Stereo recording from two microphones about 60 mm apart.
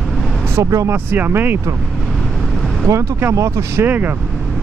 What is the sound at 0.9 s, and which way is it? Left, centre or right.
Speech, right.